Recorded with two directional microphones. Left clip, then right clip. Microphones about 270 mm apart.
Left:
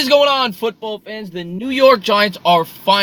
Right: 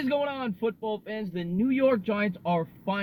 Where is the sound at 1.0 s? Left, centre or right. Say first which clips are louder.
Left 7 dB; centre.